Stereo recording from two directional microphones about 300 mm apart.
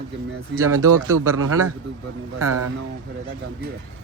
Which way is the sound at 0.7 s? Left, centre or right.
Right.